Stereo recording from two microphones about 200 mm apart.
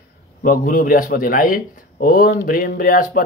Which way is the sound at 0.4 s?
40° left (ahead or behind).